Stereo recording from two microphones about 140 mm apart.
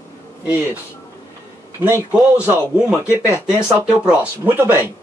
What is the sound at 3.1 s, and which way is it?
Speech, 20° left (ahead or behind).